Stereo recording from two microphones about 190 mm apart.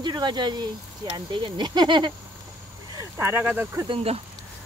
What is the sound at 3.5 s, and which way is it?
Speech, 10° right (ahead or behind).